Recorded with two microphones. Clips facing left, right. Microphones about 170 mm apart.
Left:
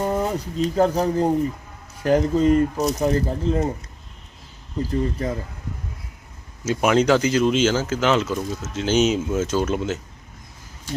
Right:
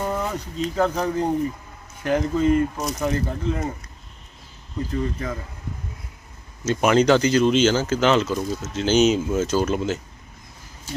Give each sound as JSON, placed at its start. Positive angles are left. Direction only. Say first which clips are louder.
{"t": 0.0, "sound": "speech", "louder": "left 3 dB", "side_deg": 25}
{"t": 4.8, "sound": "speech", "louder": "left 3 dB", "side_deg": 30}
{"t": 6.7, "sound": "speech", "louder": "right 1 dB", "side_deg": 5}